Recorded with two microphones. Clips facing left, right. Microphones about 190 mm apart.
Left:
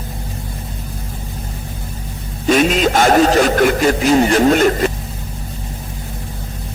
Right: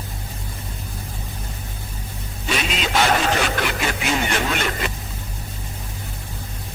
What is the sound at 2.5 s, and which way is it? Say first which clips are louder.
A man's voice: left 11 dB; 45° left (ahead or behind).